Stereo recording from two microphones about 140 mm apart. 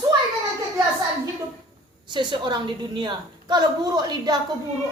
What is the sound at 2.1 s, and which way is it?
A woman's voice, 35° right (ahead or behind).